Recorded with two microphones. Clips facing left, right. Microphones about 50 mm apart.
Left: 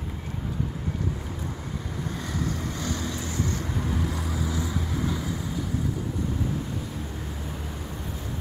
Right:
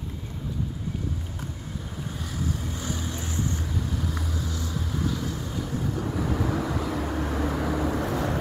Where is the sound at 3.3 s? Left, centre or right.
Left.